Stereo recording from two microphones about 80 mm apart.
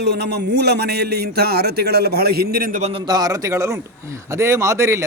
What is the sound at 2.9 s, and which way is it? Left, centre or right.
A man's voice, right.